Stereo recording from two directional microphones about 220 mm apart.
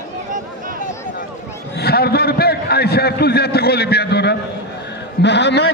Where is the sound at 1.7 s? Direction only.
45° left (ahead or behind).